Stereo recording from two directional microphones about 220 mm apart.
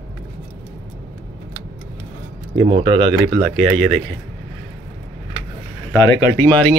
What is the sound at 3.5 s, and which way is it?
Speech, centre (ahead or behind).